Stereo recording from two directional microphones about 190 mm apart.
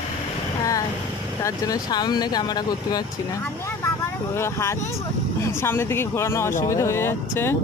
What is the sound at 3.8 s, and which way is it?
Vehicle, 15° left (ahead or behind).